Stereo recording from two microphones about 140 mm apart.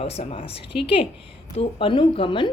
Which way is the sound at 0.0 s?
45° left (ahead or behind).